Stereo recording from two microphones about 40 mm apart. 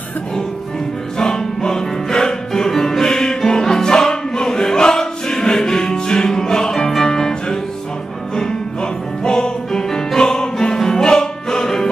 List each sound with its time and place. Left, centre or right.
1.1 s music: centre
9.2 s music: centre